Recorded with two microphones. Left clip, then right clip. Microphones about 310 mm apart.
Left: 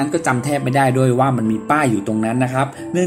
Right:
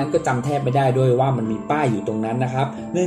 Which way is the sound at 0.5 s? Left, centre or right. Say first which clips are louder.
Left 2 dB; left.